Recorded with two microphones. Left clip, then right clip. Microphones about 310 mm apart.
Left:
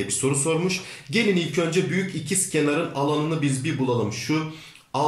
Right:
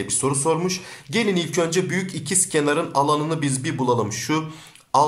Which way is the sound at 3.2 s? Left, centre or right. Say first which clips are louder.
Right 1 dB; centre.